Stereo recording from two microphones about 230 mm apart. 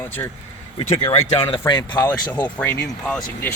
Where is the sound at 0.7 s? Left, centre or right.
Left.